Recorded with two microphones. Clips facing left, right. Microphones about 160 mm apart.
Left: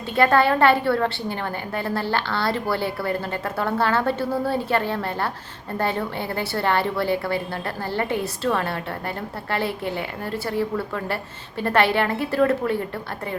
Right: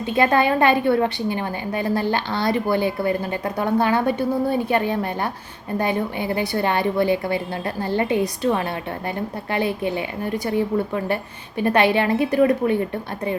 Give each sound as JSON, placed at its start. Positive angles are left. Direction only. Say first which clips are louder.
{"t": 0.0, "sound": "a woman's voice", "louder": "even", "side_deg": -20}